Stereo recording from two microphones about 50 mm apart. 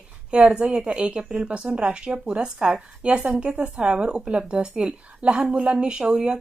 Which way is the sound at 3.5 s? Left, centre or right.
Right.